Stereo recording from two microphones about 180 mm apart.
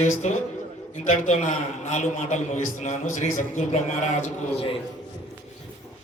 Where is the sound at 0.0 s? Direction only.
40° left (ahead or behind).